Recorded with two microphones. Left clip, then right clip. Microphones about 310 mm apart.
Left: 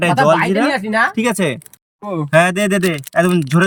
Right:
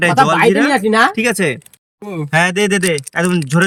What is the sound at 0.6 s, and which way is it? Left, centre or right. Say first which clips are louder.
Speech: right 3 dB; right.